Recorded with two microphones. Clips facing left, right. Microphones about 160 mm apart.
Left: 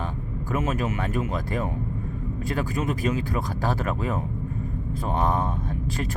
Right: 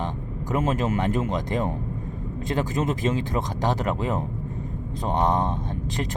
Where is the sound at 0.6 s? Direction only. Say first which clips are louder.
Right 4 dB; 30° right (ahead or behind).